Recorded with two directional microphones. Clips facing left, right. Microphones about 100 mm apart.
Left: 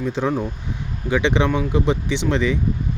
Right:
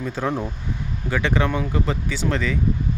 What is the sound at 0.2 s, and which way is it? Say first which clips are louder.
Speech: left 2 dB; centre (ahead or behind).